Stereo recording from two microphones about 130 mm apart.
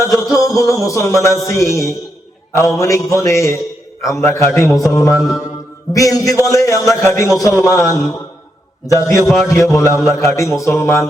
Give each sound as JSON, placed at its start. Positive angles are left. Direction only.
{"t": 0.0, "sound": "music", "side_deg": 25}
{"t": 2.5, "sound": "a man's voice", "side_deg": 20}